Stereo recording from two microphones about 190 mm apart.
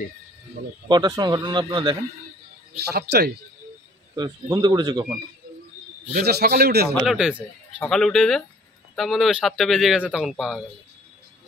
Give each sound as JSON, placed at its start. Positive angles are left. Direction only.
{"t": 0.8, "sound": "speech", "side_deg": -20}
{"t": 2.9, "sound": "a man's voice", "side_deg": -55}
{"t": 4.1, "sound": "speech", "side_deg": -20}
{"t": 6.1, "sound": "a man's voice", "side_deg": -55}
{"t": 7.1, "sound": "speech", "side_deg": -5}